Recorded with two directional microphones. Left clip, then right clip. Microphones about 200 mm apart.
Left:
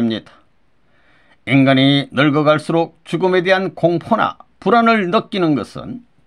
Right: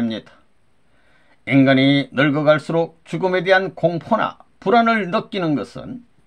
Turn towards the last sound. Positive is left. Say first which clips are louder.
# left 4 dB
turn(degrees=35)  # may be behind; listen again after turning